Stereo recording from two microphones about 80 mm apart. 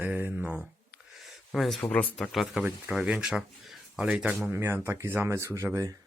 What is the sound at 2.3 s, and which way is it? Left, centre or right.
Speech, centre.